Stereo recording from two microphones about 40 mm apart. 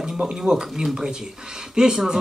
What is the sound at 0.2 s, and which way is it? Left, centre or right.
Music, centre.